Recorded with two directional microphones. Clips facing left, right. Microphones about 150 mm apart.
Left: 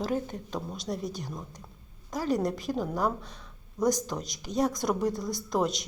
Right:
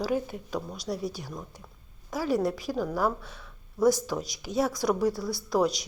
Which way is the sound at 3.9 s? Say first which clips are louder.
Right 2 dB; 5° right (ahead or behind).